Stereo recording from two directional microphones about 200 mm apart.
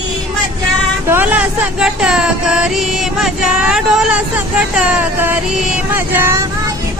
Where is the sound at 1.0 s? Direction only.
10° right (ahead or behind).